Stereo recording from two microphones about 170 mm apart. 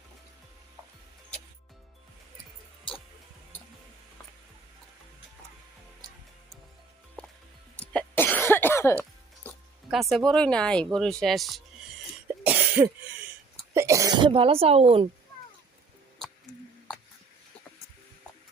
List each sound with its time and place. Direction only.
7.8 s cough: 10° left (ahead or behind)
9.9 s speech: centre (ahead or behind)
12.4 s cough: 10° right (ahead or behind)
13.7 s speech: 20° right (ahead or behind); by 15.1 s 35° right (ahead or behind)